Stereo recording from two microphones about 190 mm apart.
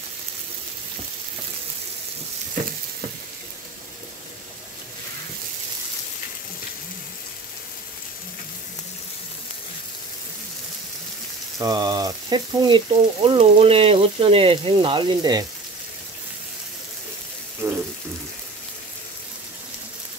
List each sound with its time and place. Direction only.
11.5 s frying: 20° right (ahead or behind)
17.6 s water tap: 15° right (ahead or behind)